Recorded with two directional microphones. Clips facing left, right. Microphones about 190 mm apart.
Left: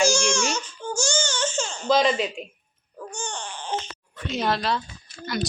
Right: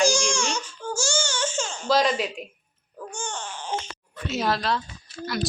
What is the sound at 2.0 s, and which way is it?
Speech, centre (ahead or behind).